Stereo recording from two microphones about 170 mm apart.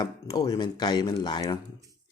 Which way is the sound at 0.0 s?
20° left (ahead or behind).